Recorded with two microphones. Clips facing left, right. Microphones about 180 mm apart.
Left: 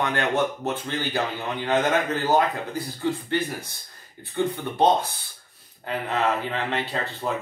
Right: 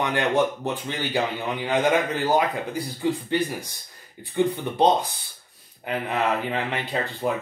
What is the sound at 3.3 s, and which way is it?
Speech, 15° right (ahead or behind).